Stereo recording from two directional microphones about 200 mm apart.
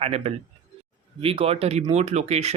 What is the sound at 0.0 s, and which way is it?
Speech, 30° right (ahead or behind).